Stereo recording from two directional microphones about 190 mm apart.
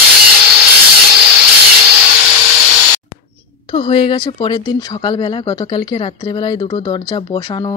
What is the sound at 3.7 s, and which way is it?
Speech, 30° left (ahead or behind).